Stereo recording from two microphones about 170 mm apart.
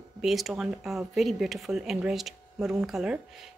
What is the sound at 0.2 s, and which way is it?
Speech, centre (ahead or behind).